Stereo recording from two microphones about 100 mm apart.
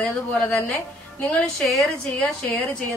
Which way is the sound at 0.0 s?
10° left (ahead or behind).